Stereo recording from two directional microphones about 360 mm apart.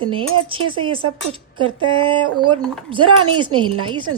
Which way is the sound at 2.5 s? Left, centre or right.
Centre.